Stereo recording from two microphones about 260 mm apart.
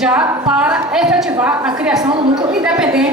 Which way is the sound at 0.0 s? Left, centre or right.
Centre.